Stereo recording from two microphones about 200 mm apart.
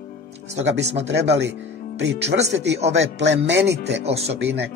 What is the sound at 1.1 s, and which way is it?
Speech, 60° right (ahead or behind).